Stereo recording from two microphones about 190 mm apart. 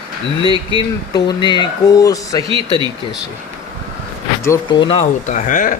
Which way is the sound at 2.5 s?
25° right (ahead or behind).